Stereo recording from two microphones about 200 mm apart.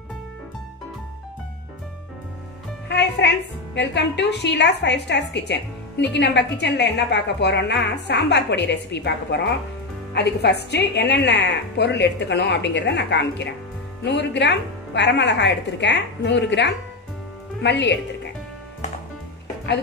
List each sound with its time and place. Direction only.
2.9 s a woman's voice: 55° left (ahead or behind)